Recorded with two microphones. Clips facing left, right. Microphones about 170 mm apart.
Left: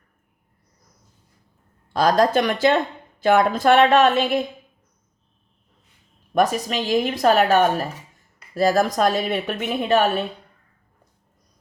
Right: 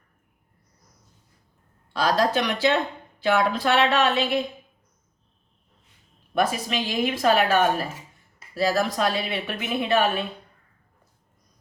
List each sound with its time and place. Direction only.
1.9 s a woman's voice: 45° left (ahead or behind)
6.3 s a woman's voice: 40° left (ahead or behind)